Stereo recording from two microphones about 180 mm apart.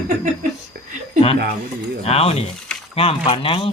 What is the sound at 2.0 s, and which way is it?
Speech, 35° left (ahead or behind).